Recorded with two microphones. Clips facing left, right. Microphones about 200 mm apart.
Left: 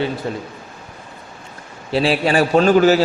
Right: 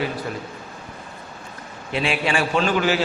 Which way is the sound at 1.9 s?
35° left (ahead or behind).